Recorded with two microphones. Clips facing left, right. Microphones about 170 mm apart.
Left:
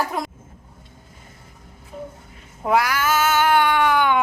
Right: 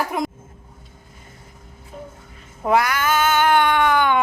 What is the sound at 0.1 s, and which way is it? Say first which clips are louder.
Speech: right 3 dB; 15° right (ahead or behind).